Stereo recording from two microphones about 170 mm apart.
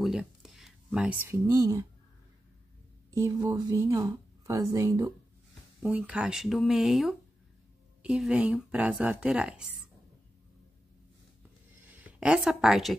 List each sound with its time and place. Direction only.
0.0 s speech: centre (ahead or behind); by 1.9 s 20° right (ahead or behind)
3.1 s speech: 20° right (ahead or behind)
5.8 s speech: 10° right (ahead or behind)
11.8 s speech: 10° right (ahead or behind)